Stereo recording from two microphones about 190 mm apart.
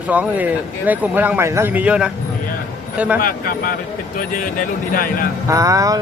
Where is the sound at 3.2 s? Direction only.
50° left (ahead or behind).